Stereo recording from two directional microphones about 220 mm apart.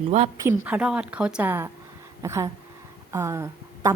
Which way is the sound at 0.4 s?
10° right (ahead or behind).